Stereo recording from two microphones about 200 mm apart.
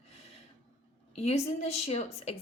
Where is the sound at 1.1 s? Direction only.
30° left (ahead or behind).